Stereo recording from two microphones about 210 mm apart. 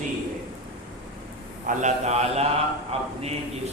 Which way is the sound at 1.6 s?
35° right (ahead or behind).